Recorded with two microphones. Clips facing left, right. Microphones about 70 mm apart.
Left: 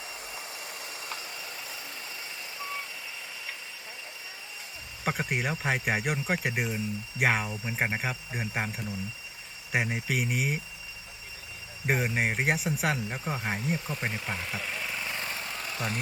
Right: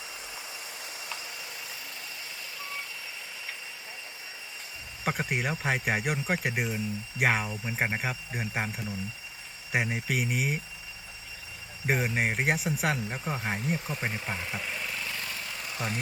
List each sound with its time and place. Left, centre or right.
5.0 s speech: centre
11.9 s speech: centre
15.0 s a sound: left